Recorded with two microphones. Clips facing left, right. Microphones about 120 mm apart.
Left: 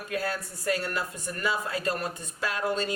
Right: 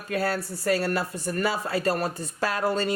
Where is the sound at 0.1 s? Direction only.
35° right (ahead or behind).